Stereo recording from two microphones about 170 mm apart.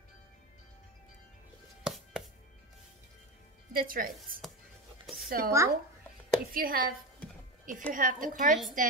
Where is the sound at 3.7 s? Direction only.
60° right (ahead or behind).